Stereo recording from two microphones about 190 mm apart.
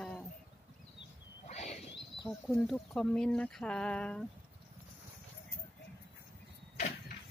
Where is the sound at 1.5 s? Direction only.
35° left (ahead or behind).